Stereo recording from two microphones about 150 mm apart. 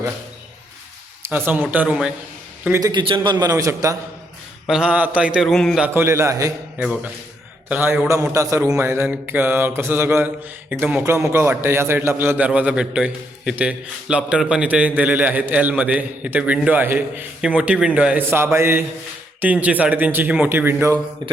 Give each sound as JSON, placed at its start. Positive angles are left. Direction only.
{"t": 1.2, "sound": "a man's voice", "side_deg": -15}
{"t": 2.8, "sound": "a man's voice", "side_deg": -35}
{"t": 4.6, "sound": "speech", "side_deg": -5}
{"t": 5.9, "sound": "a man's voice", "side_deg": -15}
{"t": 6.7, "sound": "a man's voice", "side_deg": -5}